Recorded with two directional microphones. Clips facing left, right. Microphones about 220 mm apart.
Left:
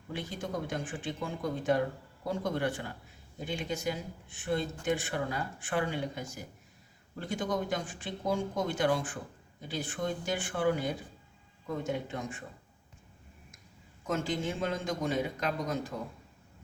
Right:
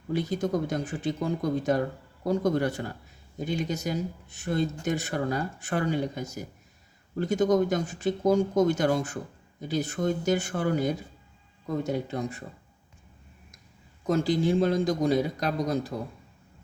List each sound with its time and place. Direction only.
0.1 s speech: 40° right (ahead or behind)
14.1 s speech: 35° right (ahead or behind)